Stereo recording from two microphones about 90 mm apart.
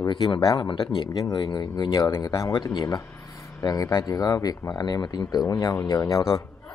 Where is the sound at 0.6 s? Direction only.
75° left (ahead or behind).